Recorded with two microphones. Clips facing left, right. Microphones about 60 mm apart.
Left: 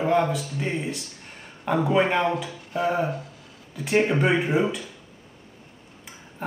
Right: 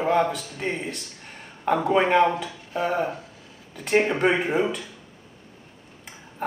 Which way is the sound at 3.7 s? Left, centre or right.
Centre.